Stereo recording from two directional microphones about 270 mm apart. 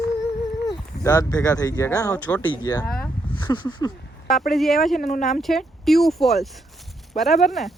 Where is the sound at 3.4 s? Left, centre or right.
Centre.